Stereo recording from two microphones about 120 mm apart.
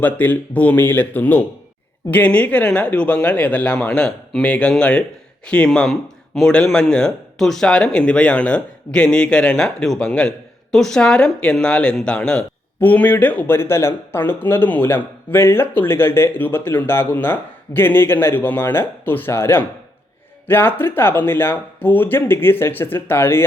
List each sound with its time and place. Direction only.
0.0 s speech: 15° left (ahead or behind)